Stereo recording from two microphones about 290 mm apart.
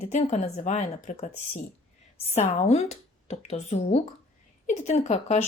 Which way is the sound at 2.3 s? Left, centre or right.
Left.